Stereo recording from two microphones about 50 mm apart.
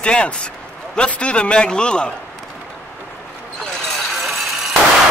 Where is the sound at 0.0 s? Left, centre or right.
Centre.